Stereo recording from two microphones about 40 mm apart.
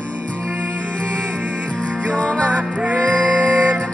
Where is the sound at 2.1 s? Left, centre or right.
Left.